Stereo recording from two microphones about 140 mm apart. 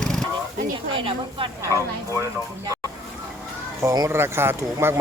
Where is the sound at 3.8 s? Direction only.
25° right (ahead or behind).